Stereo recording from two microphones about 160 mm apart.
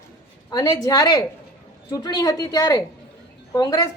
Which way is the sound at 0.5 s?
25° left (ahead or behind).